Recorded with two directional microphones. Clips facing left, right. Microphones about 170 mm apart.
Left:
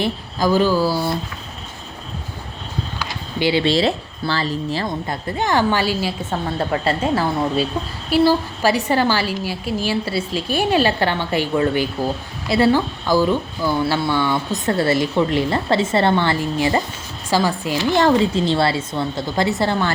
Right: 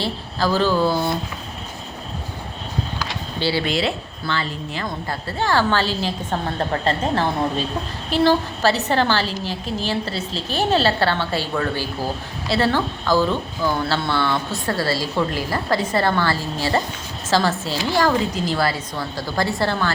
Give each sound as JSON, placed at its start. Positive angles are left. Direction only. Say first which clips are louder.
{"t": 0.0, "sound": "a woman's voice", "louder": "left 3 dB", "side_deg": 15}
{"t": 3.3, "sound": "a woman's voice", "louder": "left 4 dB", "side_deg": 15}
{"t": 3.7, "sound": "a woman's voice", "louder": "left 5 dB", "side_deg": 35}
{"t": 5.0, "sound": "a woman's voice", "louder": "left 1 dB", "side_deg": 20}